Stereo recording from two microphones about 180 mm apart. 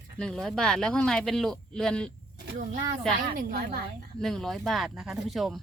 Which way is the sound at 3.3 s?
55° right (ahead or behind).